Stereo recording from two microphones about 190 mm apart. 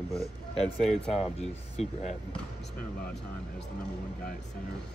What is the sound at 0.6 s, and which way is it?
Speech, 30° left (ahead or behind).